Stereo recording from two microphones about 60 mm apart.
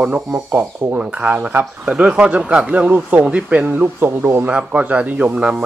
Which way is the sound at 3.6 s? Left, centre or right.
Right.